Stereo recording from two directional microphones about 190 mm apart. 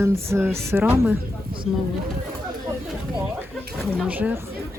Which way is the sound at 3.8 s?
5° right (ahead or behind).